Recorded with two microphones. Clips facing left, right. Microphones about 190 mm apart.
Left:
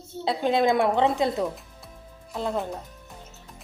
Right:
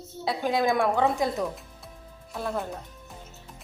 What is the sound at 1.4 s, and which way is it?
Music, centre (ahead or behind).